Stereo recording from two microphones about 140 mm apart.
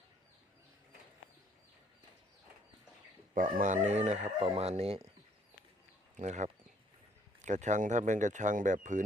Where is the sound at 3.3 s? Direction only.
75° right (ahead or behind); by 5.0 s 45° right (ahead or behind).